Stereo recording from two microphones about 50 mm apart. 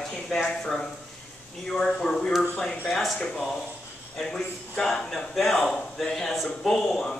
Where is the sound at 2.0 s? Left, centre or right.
Left.